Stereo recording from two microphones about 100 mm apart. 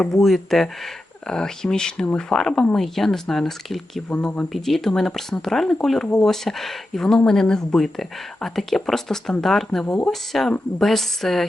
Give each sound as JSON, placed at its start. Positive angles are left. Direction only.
{"t": 0.0, "sound": "speech", "side_deg": 5}
{"t": 4.1, "sound": "speech", "side_deg": 15}
{"t": 4.5, "sound": "speech", "side_deg": 0}
{"t": 9.8, "sound": "speech", "side_deg": 15}
{"t": 10.1, "sound": "speech", "side_deg": 5}